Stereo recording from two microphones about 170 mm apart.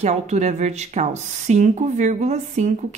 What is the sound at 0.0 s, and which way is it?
Speech, 40° right (ahead or behind).